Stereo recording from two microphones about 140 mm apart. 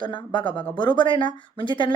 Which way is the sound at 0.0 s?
35° left (ahead or behind).